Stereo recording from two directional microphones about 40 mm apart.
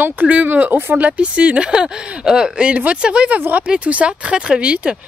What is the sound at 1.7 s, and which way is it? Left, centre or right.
Speech, centre.